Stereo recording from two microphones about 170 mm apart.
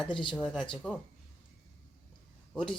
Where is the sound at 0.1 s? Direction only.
30° left (ahead or behind).